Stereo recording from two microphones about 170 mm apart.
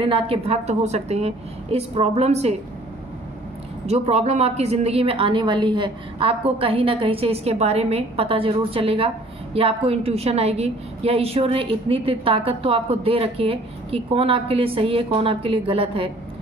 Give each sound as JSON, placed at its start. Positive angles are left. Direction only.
{"t": 0.0, "sound": "a woman's voice", "side_deg": -30}
{"t": 3.8, "sound": "a woman's voice", "side_deg": -40}